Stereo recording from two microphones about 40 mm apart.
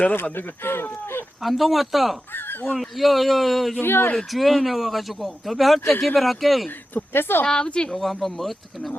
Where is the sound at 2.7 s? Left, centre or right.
Centre.